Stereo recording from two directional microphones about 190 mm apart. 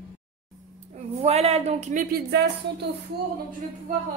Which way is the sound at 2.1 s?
60° right (ahead or behind).